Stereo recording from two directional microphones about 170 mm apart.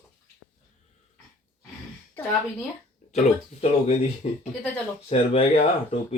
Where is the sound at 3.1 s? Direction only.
40° left (ahead or behind).